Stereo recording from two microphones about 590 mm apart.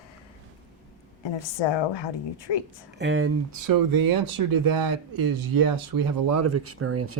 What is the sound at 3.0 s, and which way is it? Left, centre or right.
Speech, centre.